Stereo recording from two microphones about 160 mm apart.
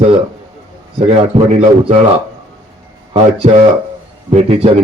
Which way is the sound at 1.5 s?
40° right (ahead or behind).